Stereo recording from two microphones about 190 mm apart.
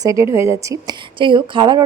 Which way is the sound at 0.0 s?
15° right (ahead or behind).